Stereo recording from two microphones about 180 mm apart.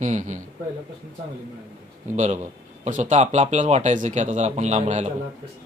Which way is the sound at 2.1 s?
40° right (ahead or behind).